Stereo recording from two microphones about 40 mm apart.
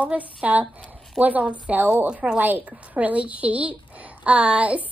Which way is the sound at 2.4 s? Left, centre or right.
Right.